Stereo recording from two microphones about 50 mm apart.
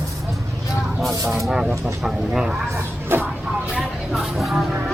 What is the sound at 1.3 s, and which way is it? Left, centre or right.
Speech, centre.